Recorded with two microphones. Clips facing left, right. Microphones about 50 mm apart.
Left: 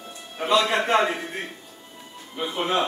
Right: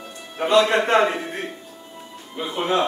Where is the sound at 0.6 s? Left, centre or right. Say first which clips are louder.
Right 6 dB; centre.